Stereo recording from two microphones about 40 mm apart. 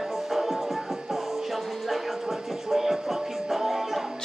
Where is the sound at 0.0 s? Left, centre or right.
Centre.